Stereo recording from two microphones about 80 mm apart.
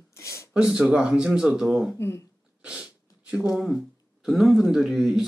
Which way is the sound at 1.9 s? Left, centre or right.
Left.